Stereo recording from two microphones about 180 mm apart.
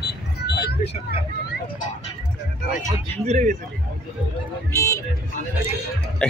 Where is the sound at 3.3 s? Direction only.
40° right (ahead or behind).